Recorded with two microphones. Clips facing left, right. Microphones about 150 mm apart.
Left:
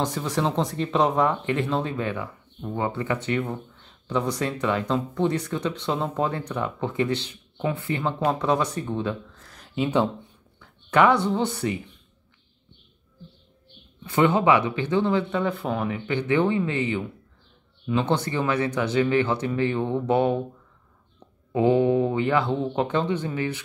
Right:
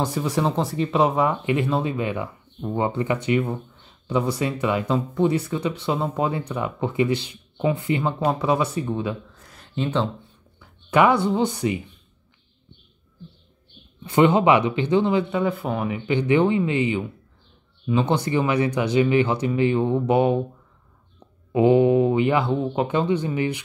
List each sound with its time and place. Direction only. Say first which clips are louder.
0.0 s speech: right 2 dB; 10° right (ahead or behind)
9.8 s speech: left 1 dB; 10° left (ahead or behind)
10.6 s speech: right 1 dB; 10° right (ahead or behind)
14.0 s speech: right 3 dB; 20° right (ahead or behind)
21.5 s speech: right 3 dB; 15° right (ahead or behind)